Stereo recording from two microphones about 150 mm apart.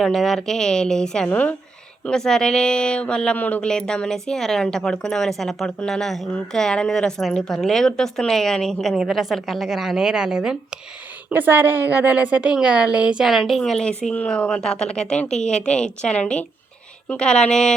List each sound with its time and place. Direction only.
0.0 s a woman's voice: centre (ahead or behind)